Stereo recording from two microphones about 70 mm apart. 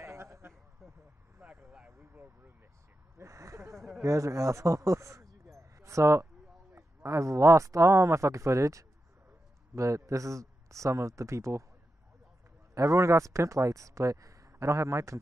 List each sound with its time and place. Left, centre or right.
0.0 s a sound: right
1.4 s speech: centre
3.2 s speech: right
12.7 s speech: right